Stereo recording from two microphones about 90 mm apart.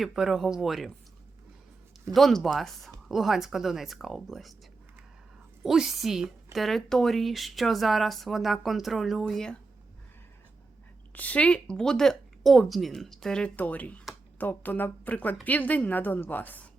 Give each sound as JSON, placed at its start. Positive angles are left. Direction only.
{"t": 0.0, "sound": "a woman's voice", "side_deg": -5}
{"t": 2.1, "sound": "a woman's voice", "side_deg": 0}
{"t": 5.6, "sound": "a woman's voice", "side_deg": -5}
{"t": 11.1, "sound": "a woman's voice", "side_deg": 15}